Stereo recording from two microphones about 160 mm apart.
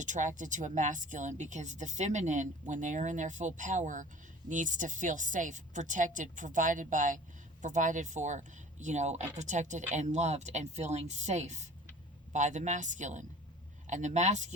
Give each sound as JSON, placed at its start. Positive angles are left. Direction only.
{"t": 0.0, "sound": "speech", "side_deg": -50}